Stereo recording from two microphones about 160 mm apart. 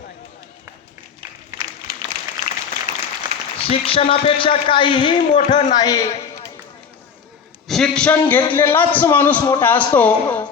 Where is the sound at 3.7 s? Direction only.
35° left (ahead or behind).